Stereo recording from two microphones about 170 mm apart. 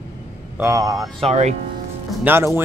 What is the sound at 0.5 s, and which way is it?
Speech, 15° right (ahead or behind).